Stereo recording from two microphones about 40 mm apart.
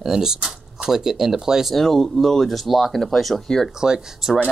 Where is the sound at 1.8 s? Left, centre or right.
Centre.